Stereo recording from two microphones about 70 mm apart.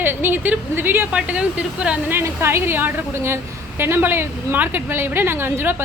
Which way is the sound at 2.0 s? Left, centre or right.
Right.